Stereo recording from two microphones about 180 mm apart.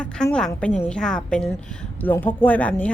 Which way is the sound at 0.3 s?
5° left (ahead or behind).